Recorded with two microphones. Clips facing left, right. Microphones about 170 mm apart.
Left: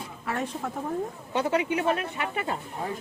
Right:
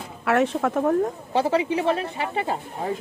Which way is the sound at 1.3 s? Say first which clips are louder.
Right 2 dB; 30° right (ahead or behind).